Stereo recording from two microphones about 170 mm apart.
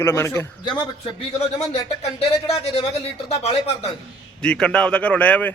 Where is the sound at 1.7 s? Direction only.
40° left (ahead or behind).